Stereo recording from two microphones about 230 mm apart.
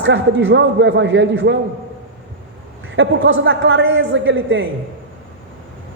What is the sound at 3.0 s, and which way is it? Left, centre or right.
A man's voice, right.